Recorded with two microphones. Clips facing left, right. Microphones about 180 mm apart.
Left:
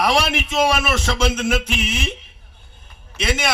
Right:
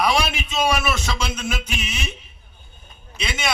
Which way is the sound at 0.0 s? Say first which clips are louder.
Left 2 dB; 75° left (ahead or behind).